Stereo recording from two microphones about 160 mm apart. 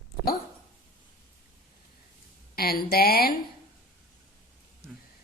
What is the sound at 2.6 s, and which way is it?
Speech, 70° left (ahead or behind).